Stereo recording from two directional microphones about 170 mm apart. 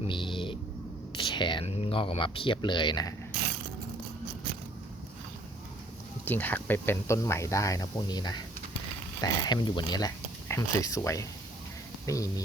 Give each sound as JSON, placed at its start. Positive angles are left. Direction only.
{"t": 0.1, "sound": "a sound", "side_deg": 30}
{"t": 1.2, "sound": "speech", "side_deg": 25}
{"t": 6.2, "sound": "speech", "side_deg": 10}